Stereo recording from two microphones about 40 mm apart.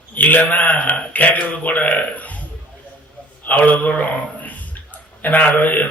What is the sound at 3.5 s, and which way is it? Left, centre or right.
A man's voice, left.